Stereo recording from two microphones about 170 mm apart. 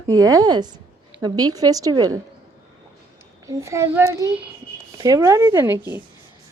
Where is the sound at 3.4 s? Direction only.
15° right (ahead or behind).